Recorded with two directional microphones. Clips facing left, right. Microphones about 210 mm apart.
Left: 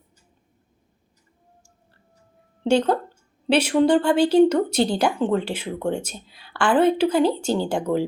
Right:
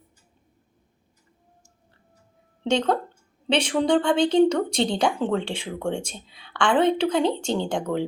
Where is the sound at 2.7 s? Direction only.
5° left (ahead or behind).